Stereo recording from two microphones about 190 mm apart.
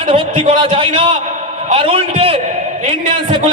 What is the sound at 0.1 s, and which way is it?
A man's voice, 25° right (ahead or behind).